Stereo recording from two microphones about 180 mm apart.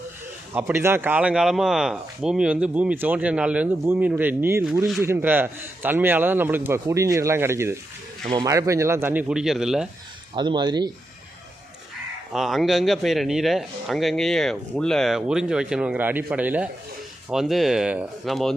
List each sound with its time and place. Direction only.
0.5 s speech: 15° right (ahead or behind)
10.3 s speech: 25° right (ahead or behind)
12.3 s a man's voice: centre (ahead or behind)